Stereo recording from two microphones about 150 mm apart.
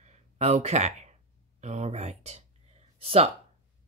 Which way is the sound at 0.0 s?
45° right (ahead or behind).